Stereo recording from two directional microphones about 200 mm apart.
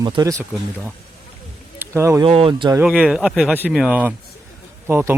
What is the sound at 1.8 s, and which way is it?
Speech, 15° right (ahead or behind).